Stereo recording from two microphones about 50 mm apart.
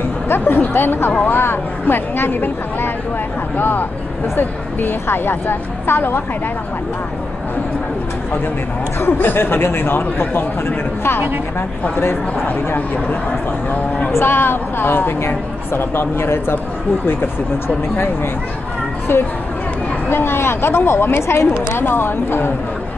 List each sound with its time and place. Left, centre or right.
0.3 s a woman's voice: left
9.0 s a woman's voice: left
12.4 s a woman's voice: left
14.1 s a woman's voice: left